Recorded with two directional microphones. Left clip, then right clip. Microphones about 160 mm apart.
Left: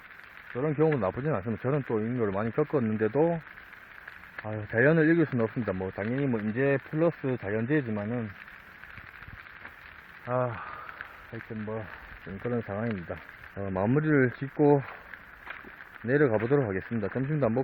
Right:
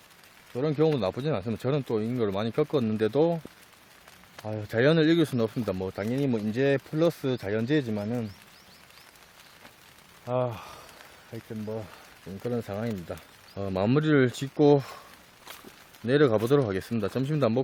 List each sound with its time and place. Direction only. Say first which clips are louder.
0.5 s speech: right 1 dB; 10° right (ahead or behind)
4.4 s speech: even; 10° right (ahead or behind)
10.2 s speech: right 1 dB; centre (ahead or behind)
13.6 s speech: right 2 dB; 20° right (ahead or behind)
16.0 s speech: right 2 dB; 25° right (ahead or behind)